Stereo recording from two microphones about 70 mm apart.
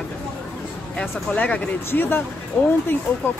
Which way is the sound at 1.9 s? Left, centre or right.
Left.